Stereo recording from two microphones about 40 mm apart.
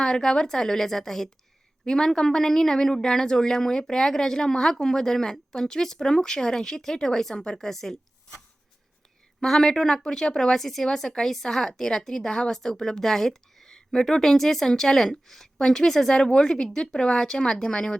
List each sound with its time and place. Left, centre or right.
0.0 s speech: centre
9.4 s speech: centre
10.6 s speech: centre